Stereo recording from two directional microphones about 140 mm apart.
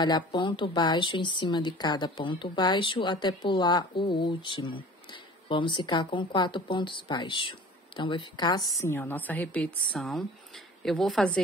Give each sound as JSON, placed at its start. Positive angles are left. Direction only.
{"t": 0.0, "sound": "a woman's voice", "side_deg": 35}